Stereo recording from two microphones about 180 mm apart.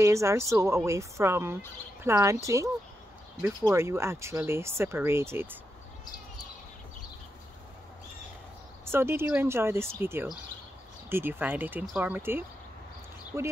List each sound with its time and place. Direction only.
0.0 s speech: 15° right (ahead or behind)
8.9 s speech: 15° right (ahead or behind)